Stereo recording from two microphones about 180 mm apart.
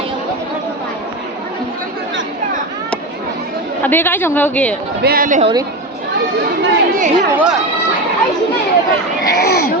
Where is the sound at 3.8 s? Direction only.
10° left (ahead or behind).